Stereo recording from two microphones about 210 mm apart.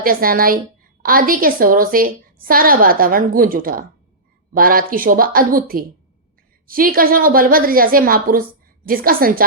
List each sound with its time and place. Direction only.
0.0 s a woman's voice: 45° right (ahead or behind)